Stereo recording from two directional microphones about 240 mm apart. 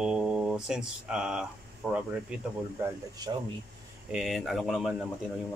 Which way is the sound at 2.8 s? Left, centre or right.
Centre.